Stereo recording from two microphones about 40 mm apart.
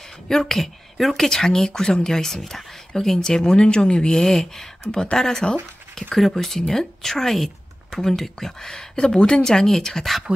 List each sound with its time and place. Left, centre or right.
0.3 s speech: centre